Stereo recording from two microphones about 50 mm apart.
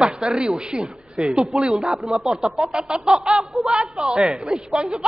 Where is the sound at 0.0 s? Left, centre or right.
Right.